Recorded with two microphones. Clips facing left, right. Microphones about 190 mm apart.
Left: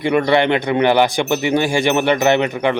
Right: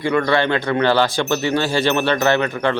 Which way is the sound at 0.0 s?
20° left (ahead or behind).